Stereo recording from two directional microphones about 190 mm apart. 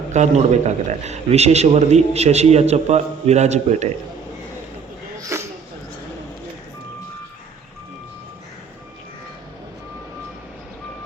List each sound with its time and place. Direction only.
0.1 s speech: 40° right (ahead or behind)
5.3 s dog: 15° right (ahead or behind)